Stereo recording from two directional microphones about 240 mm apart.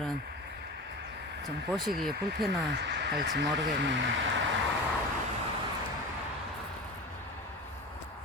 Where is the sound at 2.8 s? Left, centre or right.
Right.